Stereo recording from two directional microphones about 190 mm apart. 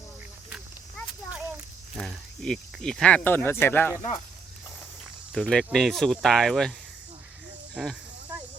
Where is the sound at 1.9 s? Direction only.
Centre (ahead or behind).